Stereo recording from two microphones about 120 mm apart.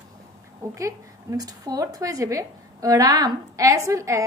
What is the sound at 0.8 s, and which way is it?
A woman's voice, 25° right (ahead or behind).